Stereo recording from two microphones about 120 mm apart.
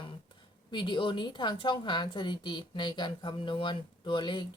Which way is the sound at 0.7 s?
40° left (ahead or behind).